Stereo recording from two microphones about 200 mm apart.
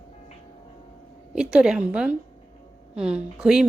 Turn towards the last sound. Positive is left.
turn(degrees=-5)  # may be behind; listen again after turning